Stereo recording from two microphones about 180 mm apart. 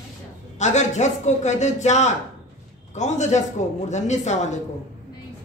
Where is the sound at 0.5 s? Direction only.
40° left (ahead or behind).